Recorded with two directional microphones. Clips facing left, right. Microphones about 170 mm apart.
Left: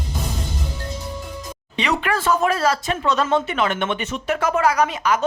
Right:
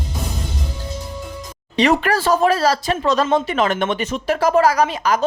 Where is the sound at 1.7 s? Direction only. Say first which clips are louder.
Right 6 dB; 40° right (ahead or behind).